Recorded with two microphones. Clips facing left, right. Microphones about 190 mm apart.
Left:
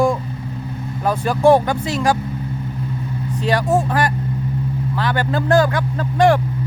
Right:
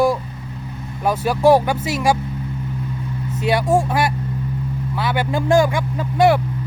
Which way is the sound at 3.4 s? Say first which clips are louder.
Right 1 dB; 10° right (ahead or behind).